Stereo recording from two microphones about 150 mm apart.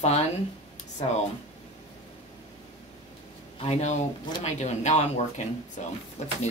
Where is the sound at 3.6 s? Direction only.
50° left (ahead or behind).